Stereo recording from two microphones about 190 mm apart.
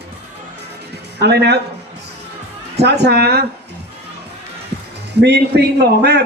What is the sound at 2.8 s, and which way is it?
Speech, 60° right (ahead or behind).